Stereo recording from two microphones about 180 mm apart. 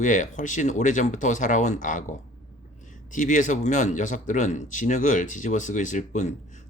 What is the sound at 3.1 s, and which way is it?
Speech, 45° left (ahead or behind).